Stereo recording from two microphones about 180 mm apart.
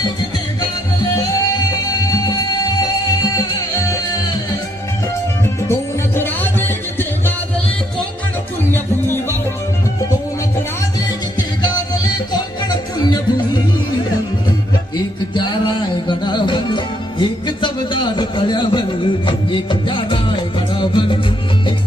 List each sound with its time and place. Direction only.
2.0 s music: 20° left (ahead or behind)
6.1 s music: 10° left (ahead or behind)
13.0 s music: 25° left (ahead or behind)
15.6 s music: 25° left (ahead or behind)